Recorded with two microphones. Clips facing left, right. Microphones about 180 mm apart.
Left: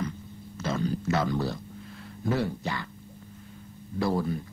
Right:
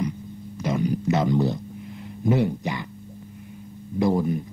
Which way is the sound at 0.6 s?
15° right (ahead or behind).